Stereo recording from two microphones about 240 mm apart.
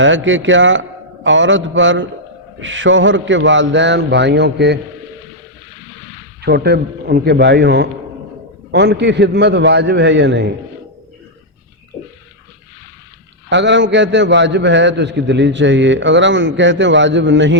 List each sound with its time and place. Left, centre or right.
0.0 s a man's voice: right
6.4 s a man's voice: right
13.5 s a man's voice: right